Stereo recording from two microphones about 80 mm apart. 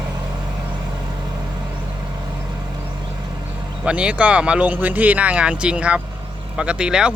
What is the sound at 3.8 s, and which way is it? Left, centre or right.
Speech, centre.